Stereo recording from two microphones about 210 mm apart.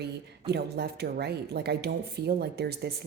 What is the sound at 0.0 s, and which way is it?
Speech, 50° right (ahead or behind).